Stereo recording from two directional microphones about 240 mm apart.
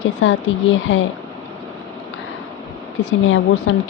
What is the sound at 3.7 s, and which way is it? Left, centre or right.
Speech, left.